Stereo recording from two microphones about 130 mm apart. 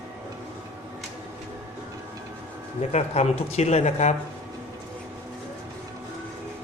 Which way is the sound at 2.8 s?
55° left (ahead or behind).